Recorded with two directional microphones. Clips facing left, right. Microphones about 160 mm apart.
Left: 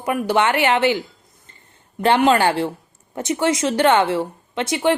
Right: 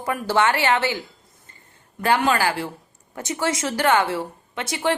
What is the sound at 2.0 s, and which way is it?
A woman's voice, 25° left (ahead or behind).